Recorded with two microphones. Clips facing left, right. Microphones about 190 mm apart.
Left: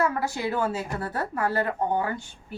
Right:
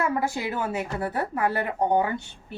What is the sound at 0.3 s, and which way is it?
Speech, 20° right (ahead or behind).